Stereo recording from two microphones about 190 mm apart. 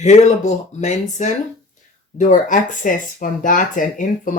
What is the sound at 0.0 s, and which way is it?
Speech, 35° left (ahead or behind).